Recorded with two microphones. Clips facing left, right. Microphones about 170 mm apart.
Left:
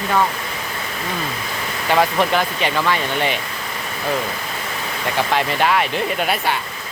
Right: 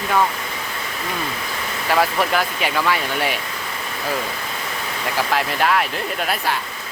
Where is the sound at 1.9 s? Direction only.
Centre (ahead or behind).